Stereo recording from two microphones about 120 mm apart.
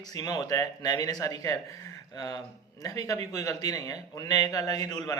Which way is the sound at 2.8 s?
30° left (ahead or behind).